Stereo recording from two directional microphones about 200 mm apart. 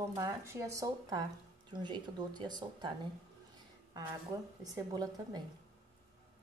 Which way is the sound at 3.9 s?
15° right (ahead or behind).